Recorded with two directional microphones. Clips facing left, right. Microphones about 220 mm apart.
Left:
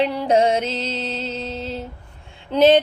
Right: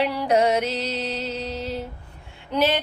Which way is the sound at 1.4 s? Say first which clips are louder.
Left 1 dB; 25° left (ahead or behind).